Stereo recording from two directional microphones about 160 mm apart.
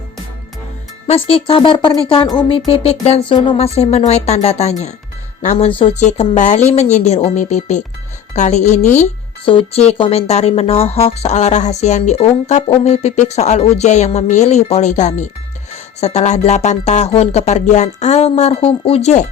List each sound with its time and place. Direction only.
1.0 s speech: 35° left (ahead or behind)
2.6 s speech: 40° left (ahead or behind)
9.5 s speech: 35° left (ahead or behind)